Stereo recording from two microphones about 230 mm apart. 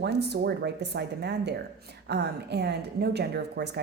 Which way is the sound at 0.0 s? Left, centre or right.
Right.